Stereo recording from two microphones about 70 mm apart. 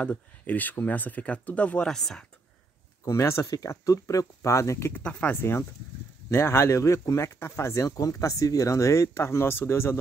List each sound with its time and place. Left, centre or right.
0.0 s speech: left
1.9 s speech: centre
3.1 s speech: left
3.4 s speech: left
4.9 s speech: left